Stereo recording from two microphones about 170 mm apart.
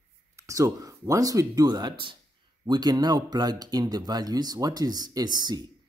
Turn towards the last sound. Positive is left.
turn(degrees=-25)  # may be behind; listen again after turning